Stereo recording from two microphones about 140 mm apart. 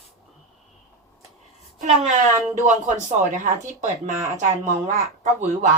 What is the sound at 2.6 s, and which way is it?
Speech, 60° right (ahead or behind).